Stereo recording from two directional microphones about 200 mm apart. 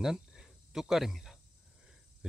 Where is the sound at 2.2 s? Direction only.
5° right (ahead or behind).